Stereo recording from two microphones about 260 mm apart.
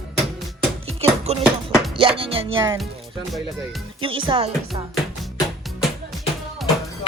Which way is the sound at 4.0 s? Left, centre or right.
Centre.